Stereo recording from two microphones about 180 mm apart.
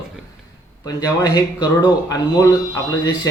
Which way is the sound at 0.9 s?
20° left (ahead or behind).